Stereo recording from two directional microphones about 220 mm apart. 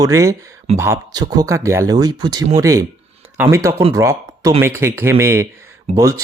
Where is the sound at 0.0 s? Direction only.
15° right (ahead or behind).